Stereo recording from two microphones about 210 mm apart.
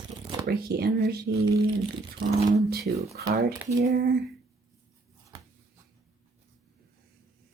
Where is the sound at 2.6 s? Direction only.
45° right (ahead or behind).